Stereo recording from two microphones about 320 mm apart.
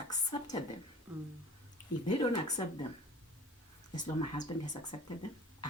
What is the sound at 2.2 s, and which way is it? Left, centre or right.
Speech, centre.